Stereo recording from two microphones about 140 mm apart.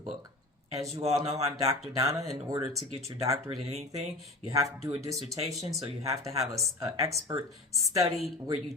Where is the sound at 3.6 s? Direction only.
50° right (ahead or behind).